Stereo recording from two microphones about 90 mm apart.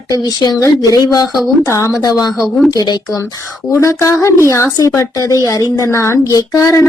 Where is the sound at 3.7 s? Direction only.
35° left (ahead or behind).